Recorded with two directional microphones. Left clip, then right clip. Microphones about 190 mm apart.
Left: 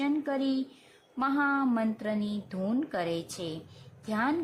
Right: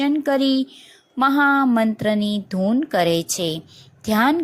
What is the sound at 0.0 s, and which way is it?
Speech, 30° right (ahead or behind).